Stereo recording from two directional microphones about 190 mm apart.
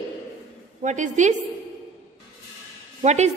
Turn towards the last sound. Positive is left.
turn(degrees=-35)  # may be behind; listen again after turning